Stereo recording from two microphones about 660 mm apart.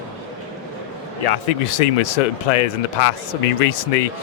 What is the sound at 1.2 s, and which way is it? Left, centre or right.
Speech, left.